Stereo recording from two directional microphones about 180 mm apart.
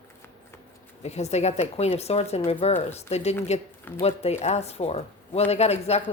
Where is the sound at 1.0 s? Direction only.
40° left (ahead or behind).